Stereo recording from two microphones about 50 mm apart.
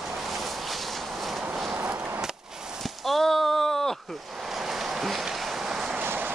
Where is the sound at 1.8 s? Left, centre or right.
Right.